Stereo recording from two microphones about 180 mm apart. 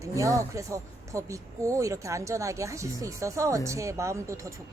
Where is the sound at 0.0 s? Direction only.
15° right (ahead or behind).